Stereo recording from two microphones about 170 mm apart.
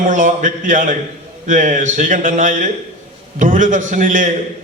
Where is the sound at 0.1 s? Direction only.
50° right (ahead or behind).